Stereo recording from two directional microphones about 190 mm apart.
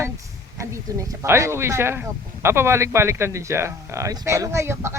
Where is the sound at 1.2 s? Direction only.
15° right (ahead or behind).